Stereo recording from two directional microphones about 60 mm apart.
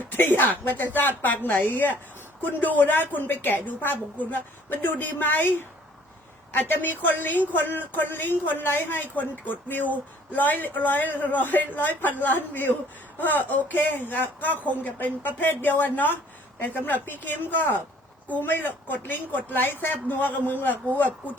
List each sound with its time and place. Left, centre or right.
0.1 s a woman's voice: left